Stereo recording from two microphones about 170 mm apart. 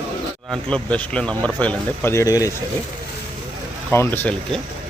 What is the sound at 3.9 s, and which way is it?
Speech, 15° left (ahead or behind).